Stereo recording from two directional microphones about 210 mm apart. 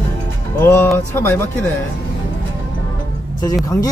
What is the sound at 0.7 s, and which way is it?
Speech, 10° left (ahead or behind).